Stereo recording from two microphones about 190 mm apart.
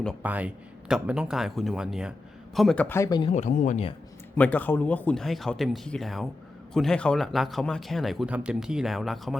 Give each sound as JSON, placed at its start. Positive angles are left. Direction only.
{"t": 0.2, "sound": "speech", "side_deg": -10}
{"t": 3.3, "sound": "speech", "side_deg": 40}
{"t": 4.4, "sound": "speech", "side_deg": 10}